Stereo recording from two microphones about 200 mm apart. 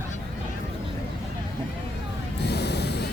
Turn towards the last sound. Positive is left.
turn(degrees=55)  # may be behind; listen again after turning